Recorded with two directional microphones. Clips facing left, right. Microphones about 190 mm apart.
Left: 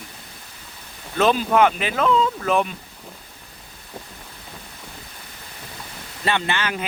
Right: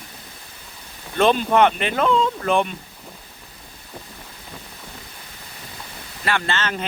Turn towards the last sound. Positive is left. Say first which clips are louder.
# even
turn(degrees=10)  # may be behind; listen again after turning